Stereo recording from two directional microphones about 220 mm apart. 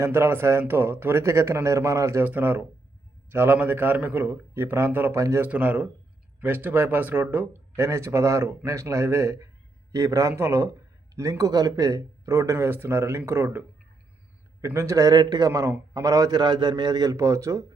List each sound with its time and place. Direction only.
0.0 s speech: 10° right (ahead or behind)